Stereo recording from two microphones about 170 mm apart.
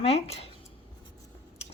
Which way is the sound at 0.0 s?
35° left (ahead or behind).